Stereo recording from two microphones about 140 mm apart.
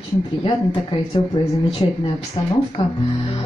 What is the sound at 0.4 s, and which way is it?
Speech, 35° left (ahead or behind).